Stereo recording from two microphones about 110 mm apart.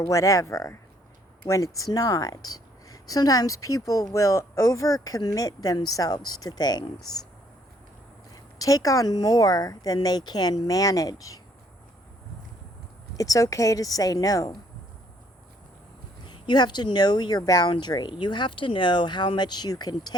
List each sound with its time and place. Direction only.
0.1 s a woman's voice: 30° left (ahead or behind)
8.5 s a woman's voice: 35° left (ahead or behind)
13.1 s a woman's voice: 30° left (ahead or behind)
16.2 s a woman's voice: 40° left (ahead or behind)